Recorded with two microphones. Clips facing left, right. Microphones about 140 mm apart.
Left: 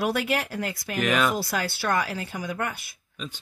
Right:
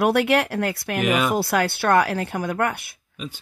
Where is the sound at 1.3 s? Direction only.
60° right (ahead or behind).